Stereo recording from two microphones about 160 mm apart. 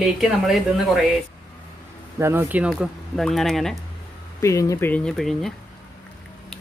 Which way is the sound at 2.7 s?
Centre (ahead or behind).